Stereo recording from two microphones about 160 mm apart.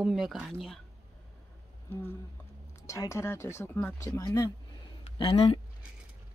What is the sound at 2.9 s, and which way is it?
Speech, 20° left (ahead or behind).